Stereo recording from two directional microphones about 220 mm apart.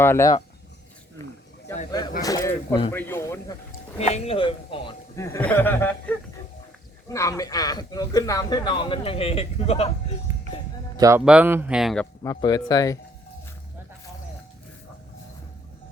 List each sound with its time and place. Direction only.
0.0 s a man's voice: 10° left (ahead or behind)
2.2 s a man's voice: 15° left (ahead or behind)
3.7 s a man's voice: 30° left (ahead or behind)
10.3 s music: 15° right (ahead or behind)
10.9 s speech: 15° right (ahead or behind)
12.2 s a man's voice: 15° left (ahead or behind)